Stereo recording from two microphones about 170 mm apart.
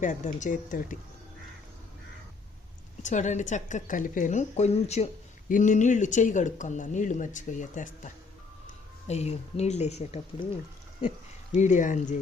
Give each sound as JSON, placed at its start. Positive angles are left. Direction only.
{"t": 0.0, "sound": "a woman's voice", "side_deg": 45}
{"t": 3.0, "sound": "a woman's voice", "side_deg": 45}
{"t": 11.5, "sound": "a woman's voice", "side_deg": 45}